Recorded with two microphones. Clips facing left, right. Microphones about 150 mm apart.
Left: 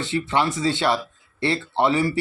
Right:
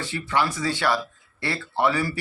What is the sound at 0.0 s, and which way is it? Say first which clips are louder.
Speech: left 3 dB; 25° left (ahead or behind).